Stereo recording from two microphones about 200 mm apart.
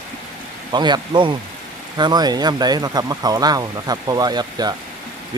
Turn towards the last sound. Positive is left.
turn(degrees=-20)  # may be behind; listen again after turning